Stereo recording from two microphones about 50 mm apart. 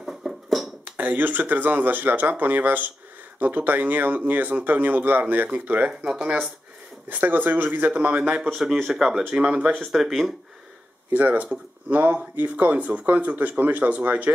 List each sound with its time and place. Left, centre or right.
0.0 s a sound: centre
0.8 s speech: right
7.1 s speech: right
8.8 s speech: centre
9.8 s speech: centre
11.1 s speech: right